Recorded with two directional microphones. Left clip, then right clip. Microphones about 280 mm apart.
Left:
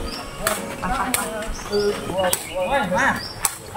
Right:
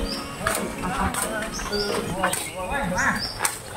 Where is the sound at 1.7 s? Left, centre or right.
Left.